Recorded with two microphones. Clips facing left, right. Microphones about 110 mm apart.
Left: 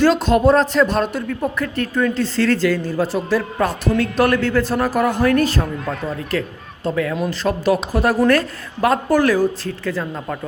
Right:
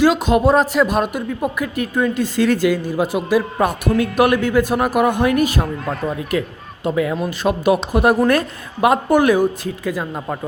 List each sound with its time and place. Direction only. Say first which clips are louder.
0.0 s a man's voice: even; 10° right (ahead or behind)
5.8 s speech: right 2 dB; centre (ahead or behind)
6.3 s a man's voice: right 2 dB; 15° right (ahead or behind)